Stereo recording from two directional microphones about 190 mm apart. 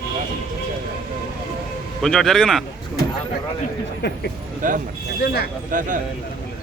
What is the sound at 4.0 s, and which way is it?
Speech, 60° left (ahead or behind).